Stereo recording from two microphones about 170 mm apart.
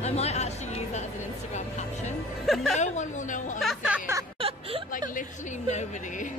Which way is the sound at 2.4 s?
Centre (ahead or behind).